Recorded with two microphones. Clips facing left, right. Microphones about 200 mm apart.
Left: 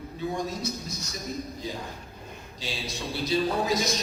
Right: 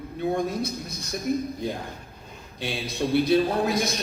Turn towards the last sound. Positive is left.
turn(degrees=-55)  # may be behind; listen again after turning